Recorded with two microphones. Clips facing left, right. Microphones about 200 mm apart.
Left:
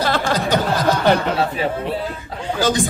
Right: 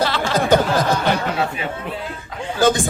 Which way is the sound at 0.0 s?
50° left (ahead or behind).